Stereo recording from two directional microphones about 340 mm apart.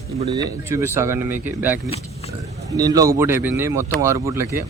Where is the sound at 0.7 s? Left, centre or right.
Centre.